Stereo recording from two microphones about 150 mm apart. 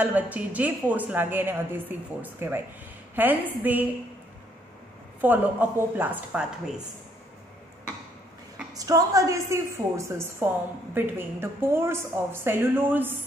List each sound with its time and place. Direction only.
0.0 s a woman's voice: 10° right (ahead or behind)
5.2 s a woman's voice: 10° right (ahead or behind)
8.7 s a woman's voice: 25° right (ahead or behind)